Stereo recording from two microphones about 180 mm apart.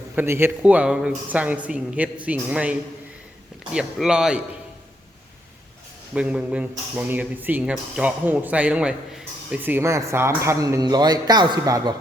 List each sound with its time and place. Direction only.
0.2 s speech: 15° right (ahead or behind)
6.1 s a man's voice: 5° right (ahead or behind)